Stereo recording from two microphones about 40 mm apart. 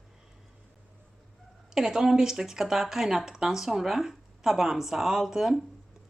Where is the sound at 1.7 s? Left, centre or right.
Centre.